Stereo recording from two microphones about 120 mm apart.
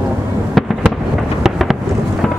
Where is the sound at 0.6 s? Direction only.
Centre (ahead or behind).